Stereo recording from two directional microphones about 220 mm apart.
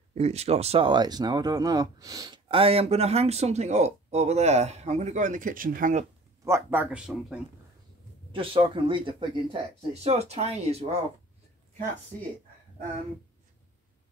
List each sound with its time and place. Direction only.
0.1 s speech: 30° right (ahead or behind)
6.4 s speech: 10° right (ahead or behind)
8.3 s speech: 25° right (ahead or behind)